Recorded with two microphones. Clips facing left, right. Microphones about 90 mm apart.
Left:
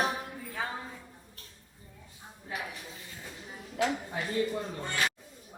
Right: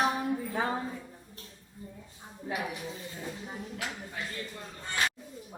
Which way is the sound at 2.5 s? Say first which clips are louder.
Right 3 dB; 5° right (ahead or behind).